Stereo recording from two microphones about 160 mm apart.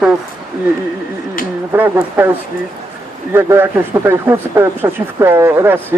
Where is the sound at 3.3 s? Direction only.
15° right (ahead or behind).